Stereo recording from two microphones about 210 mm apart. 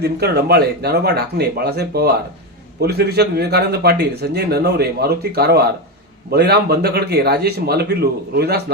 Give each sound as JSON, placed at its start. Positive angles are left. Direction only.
{"t": 0.0, "sound": "speech", "side_deg": -50}